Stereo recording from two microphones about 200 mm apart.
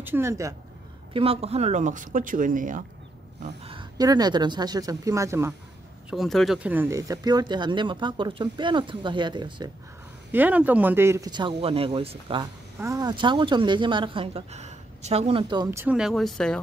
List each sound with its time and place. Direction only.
0.0 s speech: 10° right (ahead or behind)
1.1 s speech: 30° right (ahead or behind)
3.4 s speech: 25° right (ahead or behind)
6.0 s speech: centre (ahead or behind); by 9.7 s 20° right (ahead or behind)
10.3 s speech: 10° right (ahead or behind); by 12.4 s 30° right (ahead or behind)
12.7 s speech: 15° right (ahead or behind); by 16.5 s centre (ahead or behind)